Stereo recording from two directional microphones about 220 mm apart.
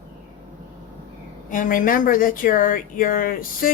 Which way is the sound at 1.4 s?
35° left (ahead or behind).